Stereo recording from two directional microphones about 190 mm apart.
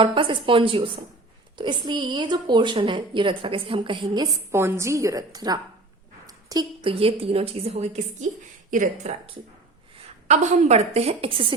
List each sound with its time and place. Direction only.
0.0 s a woman's voice: 25° right (ahead or behind); by 9.1 s 45° right (ahead or behind)
10.2 s a woman's voice: 35° right (ahead or behind)